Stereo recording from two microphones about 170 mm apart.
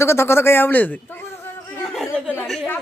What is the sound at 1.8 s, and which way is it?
Speech, centre (ahead or behind).